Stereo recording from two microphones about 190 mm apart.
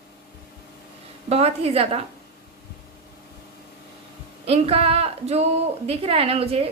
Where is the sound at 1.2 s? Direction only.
35° right (ahead or behind).